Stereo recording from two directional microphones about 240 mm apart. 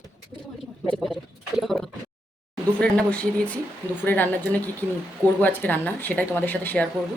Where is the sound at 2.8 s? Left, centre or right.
Centre.